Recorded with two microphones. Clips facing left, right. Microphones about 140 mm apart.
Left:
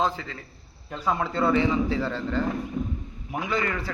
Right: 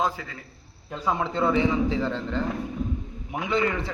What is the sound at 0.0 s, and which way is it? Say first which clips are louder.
A man's voice: left 1 dB; 10° right (ahead or behind).